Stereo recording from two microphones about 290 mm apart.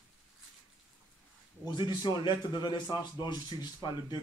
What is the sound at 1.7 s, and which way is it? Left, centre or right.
A man's voice, centre.